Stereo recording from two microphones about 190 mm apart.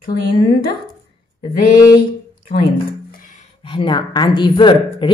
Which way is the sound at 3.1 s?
45° left (ahead or behind).